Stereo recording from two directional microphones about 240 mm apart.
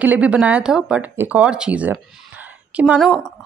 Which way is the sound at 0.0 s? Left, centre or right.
Centre.